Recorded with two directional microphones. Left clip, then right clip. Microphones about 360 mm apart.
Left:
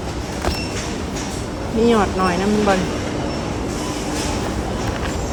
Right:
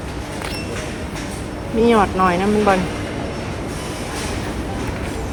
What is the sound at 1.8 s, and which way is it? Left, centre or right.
Speech, centre.